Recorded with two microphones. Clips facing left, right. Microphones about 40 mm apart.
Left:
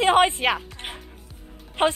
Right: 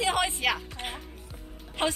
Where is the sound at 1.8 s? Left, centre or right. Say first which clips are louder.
Left 7 dB; left.